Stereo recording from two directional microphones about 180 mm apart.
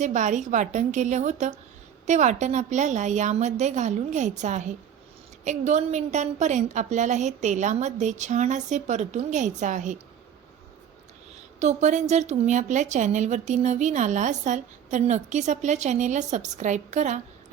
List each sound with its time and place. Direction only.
0.0 s a woman's voice: 40° right (ahead or behind)
11.6 s a woman's voice: 40° right (ahead or behind)